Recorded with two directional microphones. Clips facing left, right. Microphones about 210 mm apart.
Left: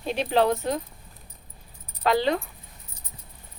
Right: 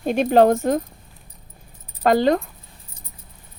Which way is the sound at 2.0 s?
45° right (ahead or behind).